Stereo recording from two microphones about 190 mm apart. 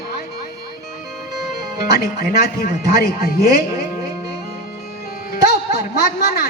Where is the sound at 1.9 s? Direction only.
55° left (ahead or behind).